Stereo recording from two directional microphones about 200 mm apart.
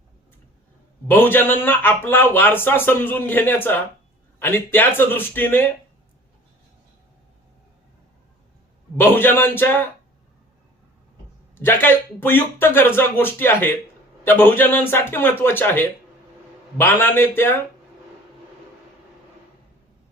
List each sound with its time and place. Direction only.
1.0 s speech: 10° left (ahead or behind)
9.0 s speech: 10° left (ahead or behind)
11.5 s speech: 10° left (ahead or behind)